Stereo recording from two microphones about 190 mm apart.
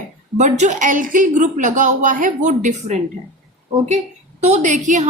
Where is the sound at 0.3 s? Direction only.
40° right (ahead or behind).